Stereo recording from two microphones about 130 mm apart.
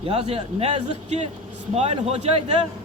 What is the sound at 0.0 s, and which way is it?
A man's voice, 50° right (ahead or behind).